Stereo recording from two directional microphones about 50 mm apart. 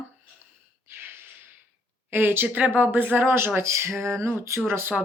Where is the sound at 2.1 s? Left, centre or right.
Right.